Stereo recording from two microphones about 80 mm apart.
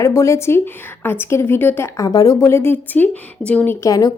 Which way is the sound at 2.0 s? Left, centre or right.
Left.